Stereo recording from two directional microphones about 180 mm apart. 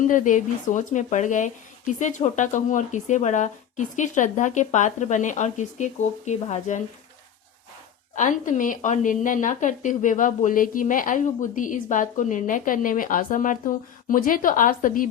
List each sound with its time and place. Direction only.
0.1 s a woman's voice: 45° left (ahead or behind)
8.1 s a woman's voice: 45° left (ahead or behind)